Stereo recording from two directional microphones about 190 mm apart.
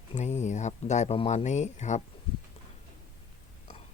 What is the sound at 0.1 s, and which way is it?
Speech, 40° left (ahead or behind).